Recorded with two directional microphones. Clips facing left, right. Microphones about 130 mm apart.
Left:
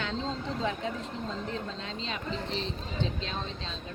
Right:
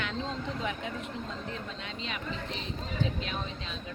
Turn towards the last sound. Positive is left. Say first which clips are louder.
# even
turn(degrees=30)  # may be behind; listen again after turning